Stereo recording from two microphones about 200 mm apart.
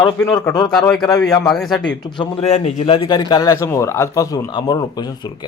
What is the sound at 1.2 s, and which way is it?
Speech, centre (ahead or behind).